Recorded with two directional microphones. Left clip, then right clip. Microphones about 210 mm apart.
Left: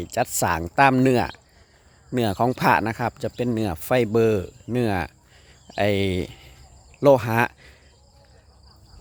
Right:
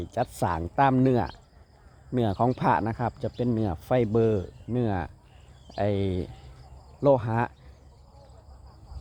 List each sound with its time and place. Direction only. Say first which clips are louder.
0.0 s speech: left 5 dB; 10° left (ahead or behind)